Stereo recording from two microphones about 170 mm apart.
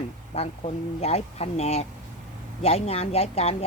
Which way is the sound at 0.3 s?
35° left (ahead or behind).